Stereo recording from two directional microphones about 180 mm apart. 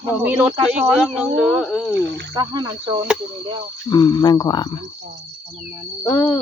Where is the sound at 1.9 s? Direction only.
75° right (ahead or behind).